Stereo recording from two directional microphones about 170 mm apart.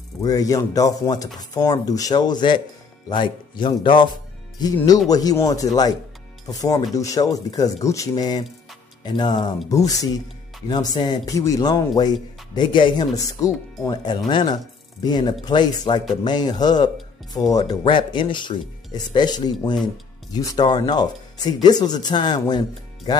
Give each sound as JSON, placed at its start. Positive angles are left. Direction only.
{"t": 0.2, "sound": "speech", "side_deg": 20}